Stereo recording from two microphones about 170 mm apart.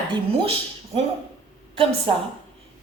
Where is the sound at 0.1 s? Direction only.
35° right (ahead or behind).